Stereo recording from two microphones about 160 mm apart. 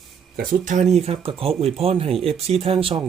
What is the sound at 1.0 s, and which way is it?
Speech, 35° right (ahead or behind).